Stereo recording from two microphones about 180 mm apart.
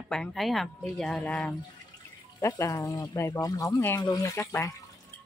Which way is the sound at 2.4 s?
20° left (ahead or behind).